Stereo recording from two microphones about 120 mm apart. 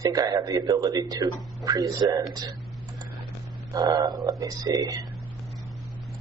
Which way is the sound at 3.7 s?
35° right (ahead or behind).